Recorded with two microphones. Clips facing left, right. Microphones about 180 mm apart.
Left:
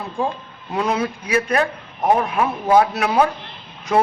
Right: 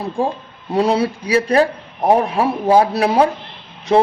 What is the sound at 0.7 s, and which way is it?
A man's voice, 35° right (ahead or behind).